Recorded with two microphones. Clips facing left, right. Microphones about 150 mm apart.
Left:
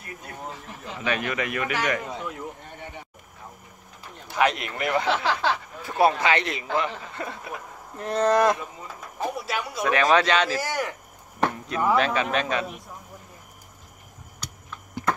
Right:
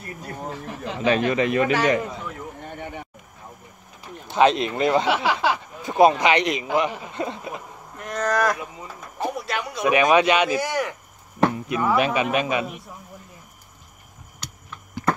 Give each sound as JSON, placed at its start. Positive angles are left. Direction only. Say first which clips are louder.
{"t": 0.9, "sound": "a man's voice", "louder": "right 7 dB", "side_deg": -30}
{"t": 4.3, "sound": "a man's voice", "louder": "right 6 dB", "side_deg": -25}
{"t": 5.0, "sound": "speech", "louder": "right 3 dB", "side_deg": -10}
{"t": 8.0, "sound": "speech", "louder": "left 3 dB", "side_deg": 30}
{"t": 9.2, "sound": "a sound", "louder": "right 2 dB", "side_deg": 0}
{"t": 9.8, "sound": "a man's voice", "louder": "right 3 dB", "side_deg": -15}
{"t": 10.6, "sound": "chop", "louder": "right 3 dB", "side_deg": 0}
{"t": 11.5, "sound": "a man's voice", "louder": "right 1 dB", "side_deg": -10}